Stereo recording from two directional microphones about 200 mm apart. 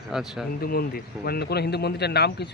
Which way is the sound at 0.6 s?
50° left (ahead or behind).